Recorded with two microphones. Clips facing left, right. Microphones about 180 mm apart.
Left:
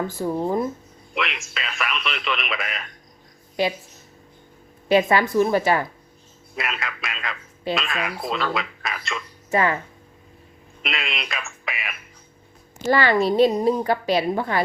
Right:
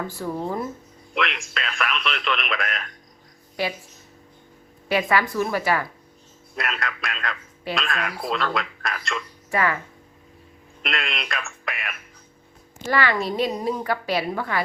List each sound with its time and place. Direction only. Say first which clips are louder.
0.1 s speech: left 4 dB; 15° left (ahead or behind)
1.1 s speech: right 1 dB; centre (ahead or behind)
3.6 s a woman's voice: left 4 dB; 20° left (ahead or behind)
4.9 s a woman's voice: left 4 dB; 25° left (ahead or behind)
6.6 s speech: right 1 dB; centre (ahead or behind)
9.5 s speech: left 3 dB; 25° left (ahead or behind)
10.8 s speech: right 1 dB; centre (ahead or behind)
12.9 s a woman's voice: left 4 dB; 30° left (ahead or behind)